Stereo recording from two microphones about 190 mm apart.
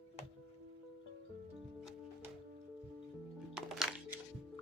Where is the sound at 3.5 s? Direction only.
5° right (ahead or behind).